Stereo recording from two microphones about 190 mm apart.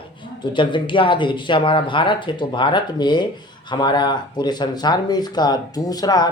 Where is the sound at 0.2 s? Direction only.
25° left (ahead or behind).